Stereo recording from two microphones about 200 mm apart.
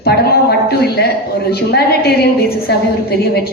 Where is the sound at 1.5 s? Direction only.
55° left (ahead or behind).